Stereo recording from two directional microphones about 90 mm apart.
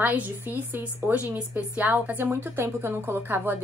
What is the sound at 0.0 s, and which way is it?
A woman's voice, 20° right (ahead or behind).